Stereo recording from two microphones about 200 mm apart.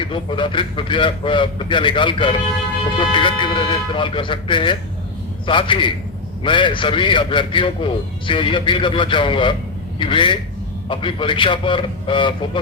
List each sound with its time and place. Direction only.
0.0 s a man's voice: 25° left (ahead or behind)